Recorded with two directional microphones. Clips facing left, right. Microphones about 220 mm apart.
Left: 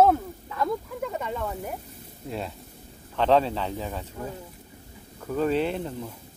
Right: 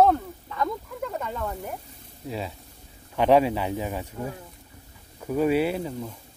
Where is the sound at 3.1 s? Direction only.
10° right (ahead or behind).